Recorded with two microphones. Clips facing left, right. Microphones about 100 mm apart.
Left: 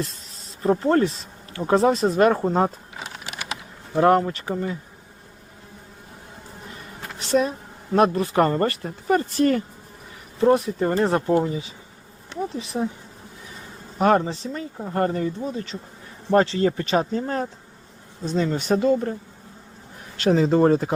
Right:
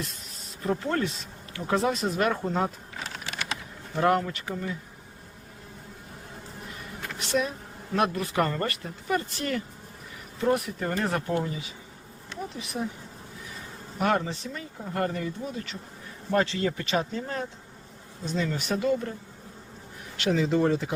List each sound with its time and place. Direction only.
0.6 s speech: 35° left (ahead or behind)
2.9 s typing: 15° left (ahead or behind)
3.9 s speech: 35° left (ahead or behind)
7.0 s a sound: 35° left (ahead or behind)
7.9 s speech: 35° left (ahead or behind)
10.4 s speech: 30° left (ahead or behind)
14.0 s speech: 35° left (ahead or behind)
20.1 s speech: 40° left (ahead or behind)